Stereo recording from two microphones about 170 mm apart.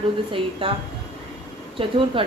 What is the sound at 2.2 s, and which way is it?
Speech, 30° right (ahead or behind).